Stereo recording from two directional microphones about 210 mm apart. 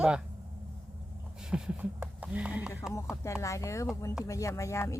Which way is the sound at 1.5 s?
5° right (ahead or behind).